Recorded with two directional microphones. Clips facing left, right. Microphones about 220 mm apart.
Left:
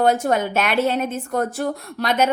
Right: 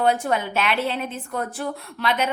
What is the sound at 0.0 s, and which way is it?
A woman's voice, 45° left (ahead or behind).